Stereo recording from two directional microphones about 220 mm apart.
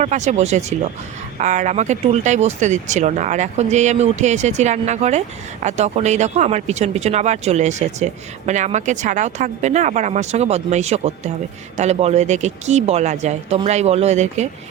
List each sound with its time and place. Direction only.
0.0 s speech: 30° right (ahead or behind)